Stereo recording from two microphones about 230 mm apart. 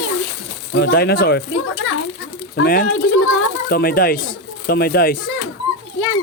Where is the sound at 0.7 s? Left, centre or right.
Left.